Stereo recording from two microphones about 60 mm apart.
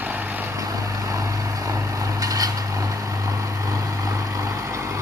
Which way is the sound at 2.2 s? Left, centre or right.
Right.